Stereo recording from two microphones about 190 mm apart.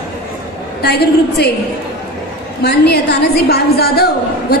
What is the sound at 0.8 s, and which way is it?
Speech, 60° left (ahead or behind).